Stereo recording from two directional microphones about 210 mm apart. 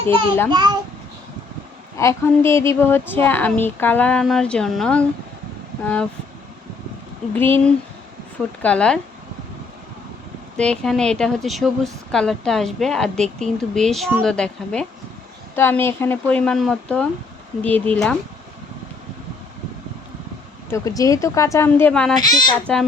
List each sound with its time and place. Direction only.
0.0 s a child's voice: 25° right (ahead or behind)
2.0 s a woman's voice: 15° left (ahead or behind)
7.3 s a woman's voice: 10° left (ahead or behind)
10.6 s a woman's voice: 5° left (ahead or behind)
20.7 s a woman's voice: 15° left (ahead or behind)
22.2 s speech: 20° left (ahead or behind)
22.6 s speech: 5° left (ahead or behind)